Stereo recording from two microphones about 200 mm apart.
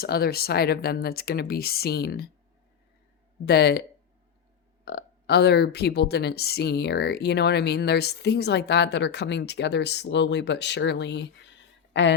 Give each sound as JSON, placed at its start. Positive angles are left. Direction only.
{"t": 0.0, "sound": "speech", "side_deg": 50}
{"t": 3.4, "sound": "speech", "side_deg": 55}
{"t": 4.9, "sound": "a woman's voice", "side_deg": 55}